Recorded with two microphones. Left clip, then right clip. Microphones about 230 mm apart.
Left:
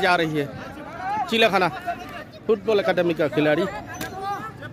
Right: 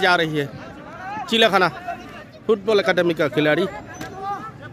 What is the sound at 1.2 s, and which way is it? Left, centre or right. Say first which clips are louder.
A man's voice: right 4 dB; right.